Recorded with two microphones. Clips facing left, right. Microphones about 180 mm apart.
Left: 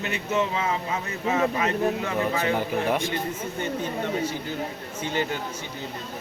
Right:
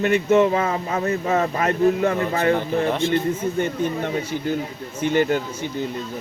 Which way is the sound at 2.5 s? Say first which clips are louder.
Right 4 dB; 10° left (ahead or behind).